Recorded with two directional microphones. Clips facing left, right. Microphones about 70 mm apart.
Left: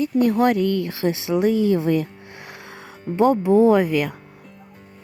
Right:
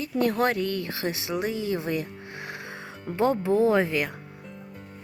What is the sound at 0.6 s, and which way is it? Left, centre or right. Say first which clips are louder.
Speech: left 7 dB; left.